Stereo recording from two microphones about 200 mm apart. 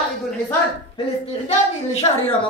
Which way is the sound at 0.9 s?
30° left (ahead or behind).